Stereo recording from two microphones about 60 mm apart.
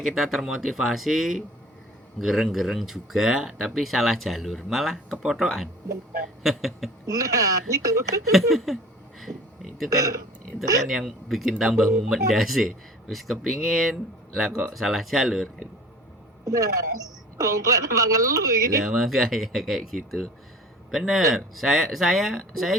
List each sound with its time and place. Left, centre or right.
0.0 s speech: centre
7.1 s speech: right
8.3 s speech: centre
9.3 s speech: right
10.8 s speech: centre
16.5 s speech: right
18.9 s speech: centre